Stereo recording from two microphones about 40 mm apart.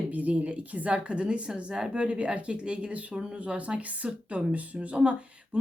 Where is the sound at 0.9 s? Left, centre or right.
Right.